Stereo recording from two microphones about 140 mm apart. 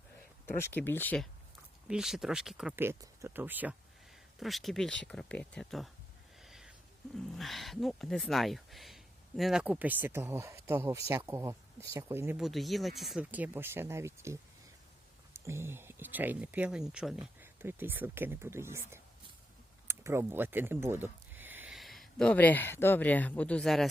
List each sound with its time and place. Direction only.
0.4 s speech: 15° left (ahead or behind)
1.9 s speech: 5° right (ahead or behind)
2.7 s speech: 20° right (ahead or behind)
4.4 s speech: centre (ahead or behind)
6.4 s a sound: 5° right (ahead or behind)
7.2 s speech: centre (ahead or behind); by 12.4 s 20° right (ahead or behind)
12.4 s speech: centre (ahead or behind)
13.3 s speech: 10° right (ahead or behind)
15.4 s speech: 20° right (ahead or behind)
21.7 s speech: centre (ahead or behind)